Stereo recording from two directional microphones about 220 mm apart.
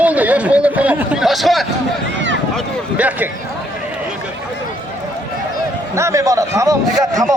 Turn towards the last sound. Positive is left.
turn(degrees=-15)  # may be behind; listen again after turning